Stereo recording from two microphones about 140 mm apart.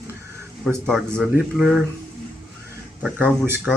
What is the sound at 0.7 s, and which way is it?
Speech, centre (ahead or behind).